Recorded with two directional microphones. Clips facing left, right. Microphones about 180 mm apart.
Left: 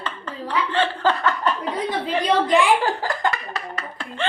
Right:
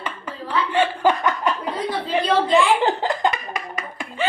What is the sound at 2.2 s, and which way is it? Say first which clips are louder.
Speech: even; 15° left (ahead or behind).